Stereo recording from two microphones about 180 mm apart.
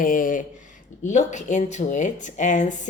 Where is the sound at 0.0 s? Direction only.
50° left (ahead or behind).